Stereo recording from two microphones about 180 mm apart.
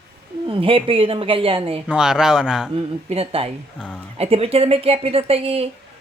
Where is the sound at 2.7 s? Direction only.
30° right (ahead or behind).